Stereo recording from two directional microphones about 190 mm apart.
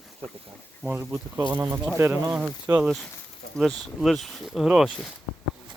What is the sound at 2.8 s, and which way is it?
Speech, centre (ahead or behind).